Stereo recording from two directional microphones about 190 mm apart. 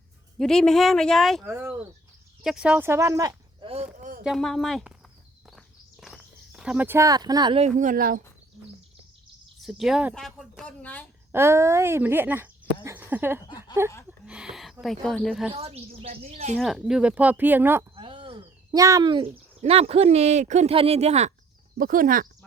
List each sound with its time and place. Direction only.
0.3 s speech: 5° left (ahead or behind)
1.5 s speech: 10° right (ahead or behind)
4.2 s speech: centre (ahead or behind)
5.5 s walk: centre (ahead or behind); by 8.2 s 50° right (ahead or behind)
9.6 s speech: centre (ahead or behind)
11.3 s speech: 15° right (ahead or behind)
13.4 s a sound: 20° left (ahead or behind)
14.3 s speech: 5° right (ahead or behind)
15.5 s speech: 30° right (ahead or behind)
16.6 s speech: centre (ahead or behind)
17.9 s speech: 25° right (ahead or behind)
21.8 s speech: 50° right (ahead or behind)